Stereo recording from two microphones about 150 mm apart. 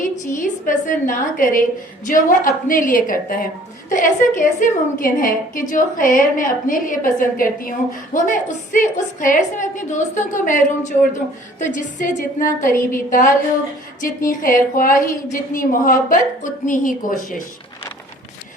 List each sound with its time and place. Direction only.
0.0 s a woman's voice: 60° left (ahead or behind)
8.1 s a woman's voice: 60° left (ahead or behind)